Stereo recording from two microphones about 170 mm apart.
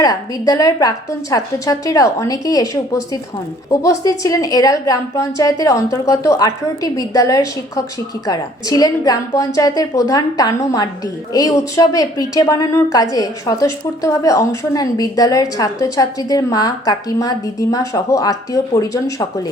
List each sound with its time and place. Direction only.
0.0 s a woman's voice: 20° left (ahead or behind)